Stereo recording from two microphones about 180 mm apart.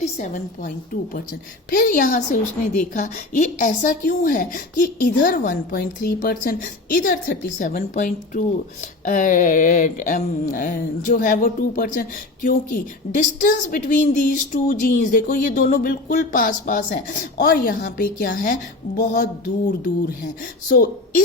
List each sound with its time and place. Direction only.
0.2 s speech: 45° left (ahead or behind)
1.7 s speech: 50° left (ahead or behind)